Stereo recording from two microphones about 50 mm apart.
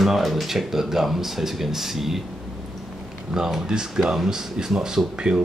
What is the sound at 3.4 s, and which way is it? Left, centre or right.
Speech, centre.